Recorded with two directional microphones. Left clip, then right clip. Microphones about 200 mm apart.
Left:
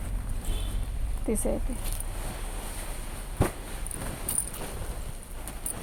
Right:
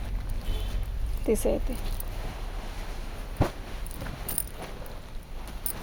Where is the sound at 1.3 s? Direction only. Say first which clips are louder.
Right 4 dB; 55° right (ahead or behind).